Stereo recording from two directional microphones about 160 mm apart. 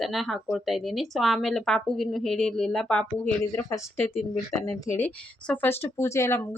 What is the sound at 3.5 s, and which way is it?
Speech, 20° left (ahead or behind).